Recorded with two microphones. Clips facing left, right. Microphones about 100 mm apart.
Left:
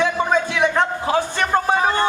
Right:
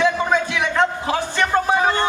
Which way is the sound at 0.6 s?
15° left (ahead or behind).